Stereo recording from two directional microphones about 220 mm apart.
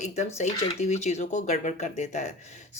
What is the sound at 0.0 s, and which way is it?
Speech, 30° left (ahead or behind).